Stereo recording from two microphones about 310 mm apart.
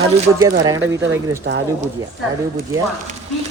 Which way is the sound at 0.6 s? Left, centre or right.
Centre.